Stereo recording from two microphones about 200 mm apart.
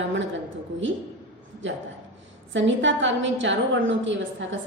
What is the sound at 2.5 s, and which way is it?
A woman's voice, 65° right (ahead or behind).